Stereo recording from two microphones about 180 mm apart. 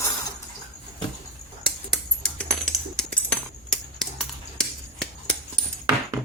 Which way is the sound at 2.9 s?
5° left (ahead or behind).